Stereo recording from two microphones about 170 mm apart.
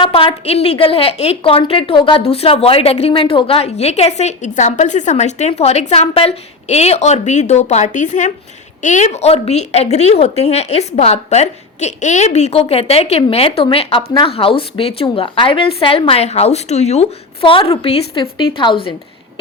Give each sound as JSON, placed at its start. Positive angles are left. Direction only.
{"t": 0.0, "sound": "a woman's voice", "side_deg": 35}